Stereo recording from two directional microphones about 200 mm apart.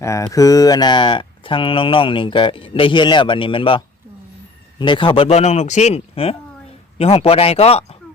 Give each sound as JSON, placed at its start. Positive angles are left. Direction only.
{"t": 0.0, "sound": "a man's voice", "side_deg": 15}